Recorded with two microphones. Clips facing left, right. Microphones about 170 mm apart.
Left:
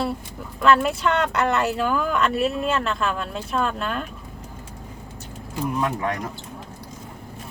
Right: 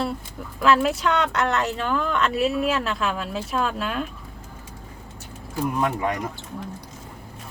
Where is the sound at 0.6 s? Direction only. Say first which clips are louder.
Left 1 dB; centre (ahead or behind).